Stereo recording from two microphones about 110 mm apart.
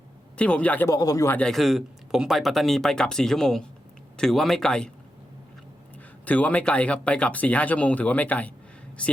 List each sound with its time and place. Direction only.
0.3 s speech: 10° left (ahead or behind)
0.9 s speech: 30° left (ahead or behind)
1.4 s speech: 5° left (ahead or behind)
6.2 s speech: 15° left (ahead or behind)